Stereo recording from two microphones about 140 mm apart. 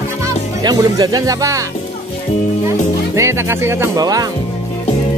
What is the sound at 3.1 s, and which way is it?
Speech, 20° right (ahead or behind).